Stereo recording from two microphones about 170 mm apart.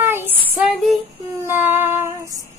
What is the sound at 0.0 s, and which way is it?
Female singing, 15° right (ahead or behind).